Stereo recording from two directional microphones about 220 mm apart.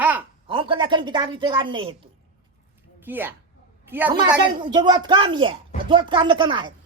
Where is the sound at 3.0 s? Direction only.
10° right (ahead or behind).